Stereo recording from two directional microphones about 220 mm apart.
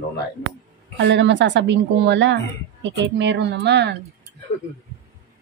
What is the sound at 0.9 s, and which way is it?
A woman's voice, 55° right (ahead or behind).